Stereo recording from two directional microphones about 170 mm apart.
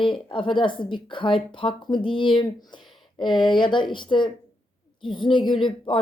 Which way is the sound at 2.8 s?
Centre (ahead or behind).